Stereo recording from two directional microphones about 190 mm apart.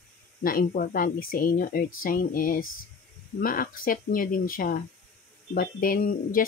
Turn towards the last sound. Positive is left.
turn(degrees=50)  # may be behind; listen again after turning